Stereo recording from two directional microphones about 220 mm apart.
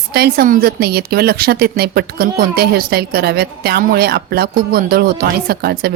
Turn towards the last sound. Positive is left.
turn(degrees=-45)  # may be behind; listen again after turning